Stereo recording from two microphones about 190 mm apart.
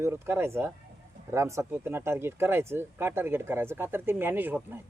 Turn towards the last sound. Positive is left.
turn(degrees=-10)  # may be behind; listen again after turning